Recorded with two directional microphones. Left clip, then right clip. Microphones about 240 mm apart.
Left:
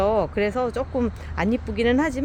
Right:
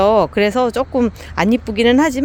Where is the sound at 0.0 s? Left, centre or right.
Right.